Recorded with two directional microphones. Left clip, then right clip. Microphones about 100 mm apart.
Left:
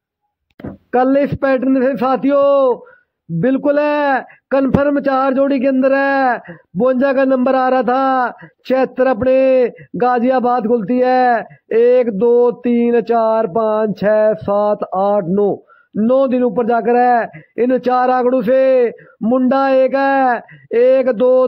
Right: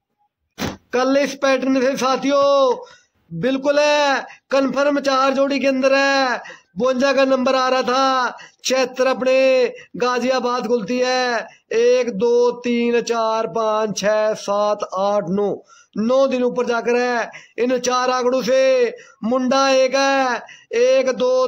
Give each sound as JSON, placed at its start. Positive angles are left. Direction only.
{"t": 0.9, "sound": "a man's voice", "side_deg": 40}